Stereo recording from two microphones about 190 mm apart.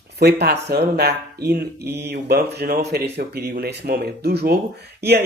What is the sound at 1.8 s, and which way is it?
Mantra, 15° right (ahead or behind).